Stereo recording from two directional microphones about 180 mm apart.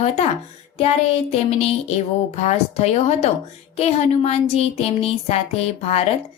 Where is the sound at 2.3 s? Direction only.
35° left (ahead or behind).